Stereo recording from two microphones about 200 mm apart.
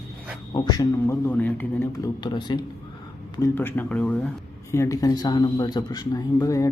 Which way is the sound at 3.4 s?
10° left (ahead or behind).